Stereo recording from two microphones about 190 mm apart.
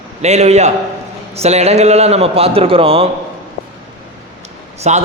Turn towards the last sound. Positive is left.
turn(degrees=-35)  # may be behind; listen again after turning